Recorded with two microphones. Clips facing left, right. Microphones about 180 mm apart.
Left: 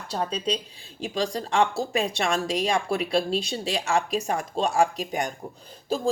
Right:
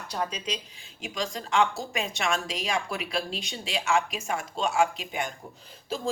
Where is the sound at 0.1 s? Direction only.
30° left (ahead or behind).